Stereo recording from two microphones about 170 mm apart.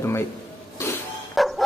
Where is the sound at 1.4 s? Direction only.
Centre (ahead or behind).